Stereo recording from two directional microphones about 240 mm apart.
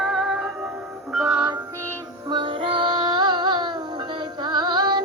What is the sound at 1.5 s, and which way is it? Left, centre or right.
Music, centre.